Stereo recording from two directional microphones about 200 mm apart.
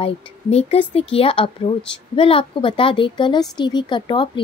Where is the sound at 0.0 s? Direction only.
30° left (ahead or behind).